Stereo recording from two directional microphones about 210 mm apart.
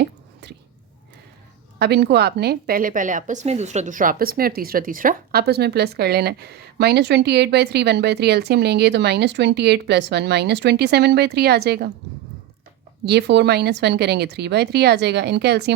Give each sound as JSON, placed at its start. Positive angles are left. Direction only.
{"t": 1.8, "sound": "a woman's voice", "side_deg": -55}
{"t": 13.1, "sound": "a woman's voice", "side_deg": -55}